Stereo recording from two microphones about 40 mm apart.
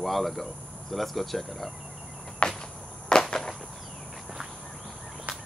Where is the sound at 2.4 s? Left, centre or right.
Left.